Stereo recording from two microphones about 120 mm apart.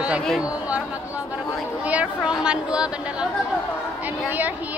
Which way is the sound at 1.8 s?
10° right (ahead or behind).